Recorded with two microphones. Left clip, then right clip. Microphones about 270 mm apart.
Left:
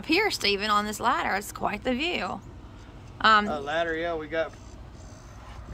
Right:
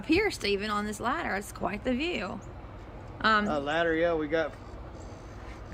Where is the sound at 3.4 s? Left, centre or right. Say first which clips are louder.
Even; right.